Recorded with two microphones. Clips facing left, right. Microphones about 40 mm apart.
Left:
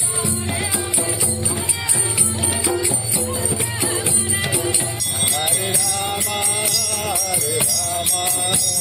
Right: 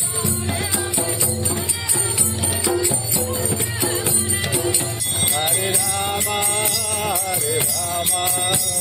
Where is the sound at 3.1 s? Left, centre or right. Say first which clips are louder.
Even; centre.